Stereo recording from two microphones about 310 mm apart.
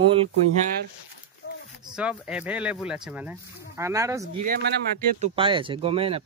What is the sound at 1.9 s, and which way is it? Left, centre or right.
Speech, centre.